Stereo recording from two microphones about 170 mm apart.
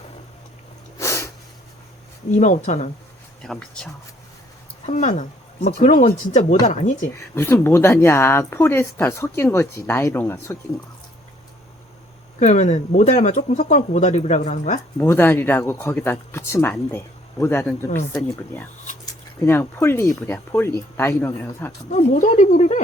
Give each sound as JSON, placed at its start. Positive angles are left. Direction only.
{"t": 0.9, "sound": "a sound", "side_deg": 15}
{"t": 2.3, "sound": "speech", "side_deg": 45}
{"t": 3.4, "sound": "speech", "side_deg": 5}
{"t": 4.9, "sound": "speech", "side_deg": 45}
{"t": 7.3, "sound": "speech", "side_deg": 15}
{"t": 12.4, "sound": "speech", "side_deg": 45}
{"t": 14.9, "sound": "speech", "side_deg": 15}
{"t": 21.8, "sound": "speech", "side_deg": 50}